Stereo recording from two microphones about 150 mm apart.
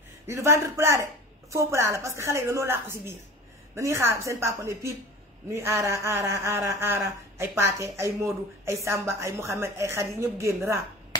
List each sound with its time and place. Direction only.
0.3 s a woman's voice: 20° right (ahead or behind)